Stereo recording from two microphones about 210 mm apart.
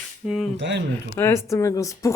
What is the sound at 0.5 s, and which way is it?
Speech, 55° right (ahead or behind).